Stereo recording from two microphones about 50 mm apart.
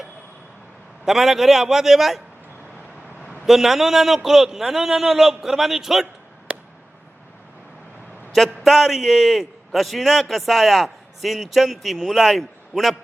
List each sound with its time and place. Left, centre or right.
1.0 s a man's voice: centre
3.4 s a man's voice: centre
6.5 s a sound: right
8.6 s a man's voice: centre